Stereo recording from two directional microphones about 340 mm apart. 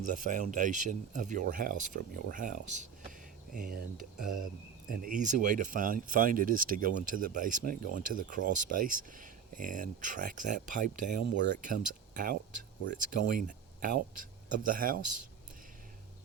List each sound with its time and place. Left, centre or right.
0.3 s speech: right
3.9 s speech: right
4.9 s speech: right
14.5 s speech: right